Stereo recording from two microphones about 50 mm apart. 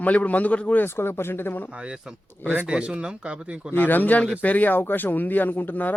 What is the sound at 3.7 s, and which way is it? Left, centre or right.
Speech, left.